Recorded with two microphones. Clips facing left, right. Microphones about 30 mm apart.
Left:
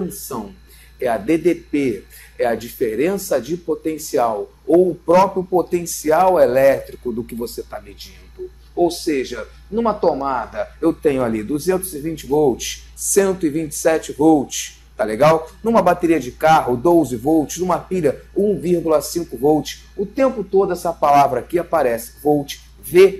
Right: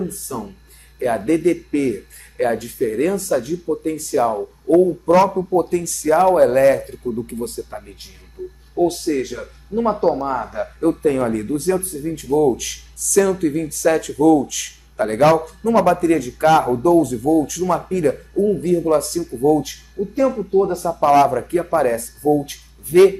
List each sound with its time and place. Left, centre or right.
0.0 s speech: centre
8.7 s speech: left
10.5 s speech: centre
19.6 s speech: left
21.0 s speech: centre